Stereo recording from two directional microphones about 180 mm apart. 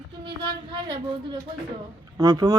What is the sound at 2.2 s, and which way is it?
Speech, 20° right (ahead or behind).